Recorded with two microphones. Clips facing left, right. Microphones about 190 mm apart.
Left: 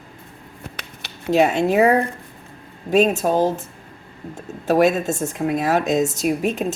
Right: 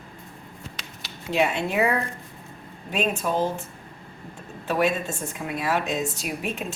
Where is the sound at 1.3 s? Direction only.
40° left (ahead or behind).